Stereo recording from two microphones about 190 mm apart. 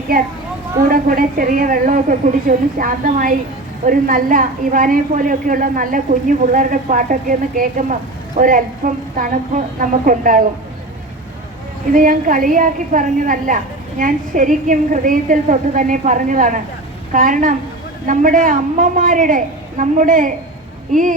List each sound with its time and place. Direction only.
0.9 s a woman's voice: 50° right (ahead or behind)
11.9 s a woman's voice: 45° right (ahead or behind)